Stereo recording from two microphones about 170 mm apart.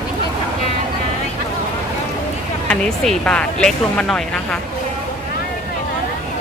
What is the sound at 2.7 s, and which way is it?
Speech, 5° left (ahead or behind).